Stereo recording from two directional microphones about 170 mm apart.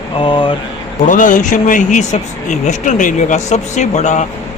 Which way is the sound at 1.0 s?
50° left (ahead or behind).